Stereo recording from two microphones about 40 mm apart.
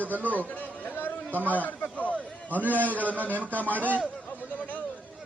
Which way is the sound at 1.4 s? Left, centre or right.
Left.